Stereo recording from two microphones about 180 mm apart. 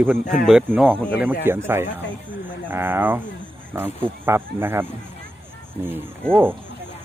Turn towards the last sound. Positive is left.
turn(degrees=-10)  # may be behind; listen again after turning